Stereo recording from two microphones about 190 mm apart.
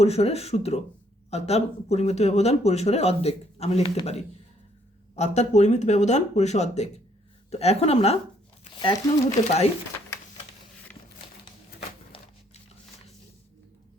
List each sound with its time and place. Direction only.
0.0 s speech: 35° left (ahead or behind)
8.8 s speech: 20° left (ahead or behind)
12.1 s a sound: 30° left (ahead or behind)